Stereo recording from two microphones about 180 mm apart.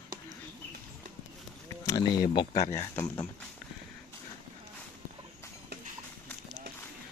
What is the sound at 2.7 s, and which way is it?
Speech, 10° left (ahead or behind).